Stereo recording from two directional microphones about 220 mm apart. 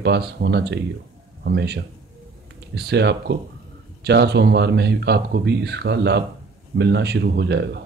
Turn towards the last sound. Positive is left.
turn(degrees=-50)  # may be behind; listen again after turning